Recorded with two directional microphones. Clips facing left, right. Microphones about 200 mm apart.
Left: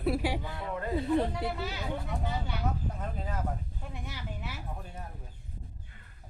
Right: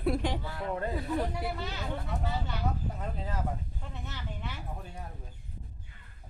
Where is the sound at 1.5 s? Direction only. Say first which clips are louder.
Left 1 dB; 5° left (ahead or behind).